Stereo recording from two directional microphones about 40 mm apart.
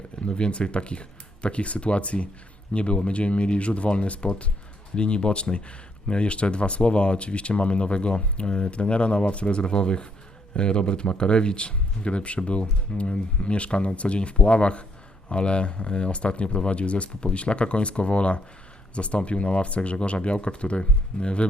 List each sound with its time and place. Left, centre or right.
0.3 s speech: left